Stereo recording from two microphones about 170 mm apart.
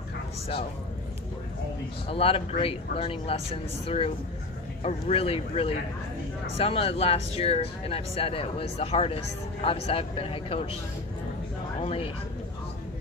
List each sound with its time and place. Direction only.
2.0 s speech: 35° left (ahead or behind)
11.8 s speech: 35° left (ahead or behind)